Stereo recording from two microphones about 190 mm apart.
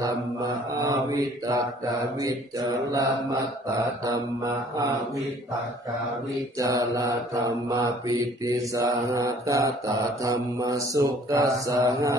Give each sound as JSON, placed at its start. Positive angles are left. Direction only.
{"t": 0.0, "sound": "mantra", "side_deg": -20}
{"t": 6.6, "sound": "mantra", "side_deg": -15}